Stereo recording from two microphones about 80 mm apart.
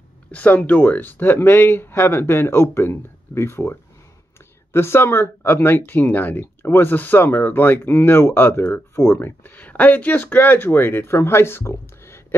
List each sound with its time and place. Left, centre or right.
0.3 s speech: centre
4.7 s speech: left